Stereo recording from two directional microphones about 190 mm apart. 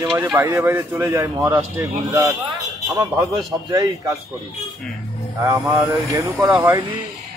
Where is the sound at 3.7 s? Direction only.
15° right (ahead or behind).